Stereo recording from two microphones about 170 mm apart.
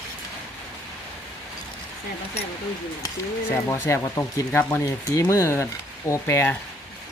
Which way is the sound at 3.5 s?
15° left (ahead or behind).